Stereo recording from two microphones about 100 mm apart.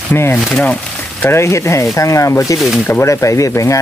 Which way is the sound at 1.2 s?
25° left (ahead or behind).